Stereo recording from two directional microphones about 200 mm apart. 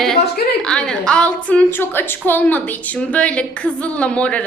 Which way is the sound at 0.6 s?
5° left (ahead or behind).